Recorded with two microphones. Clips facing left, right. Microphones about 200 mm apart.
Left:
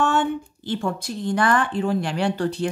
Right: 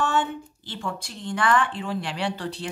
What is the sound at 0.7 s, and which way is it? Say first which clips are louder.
A woman's voice: left 8 dB; 45° left (ahead or behind).